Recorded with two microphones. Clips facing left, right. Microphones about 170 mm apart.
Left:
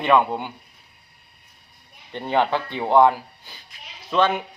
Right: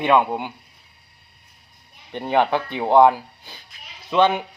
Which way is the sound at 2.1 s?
15° right (ahead or behind).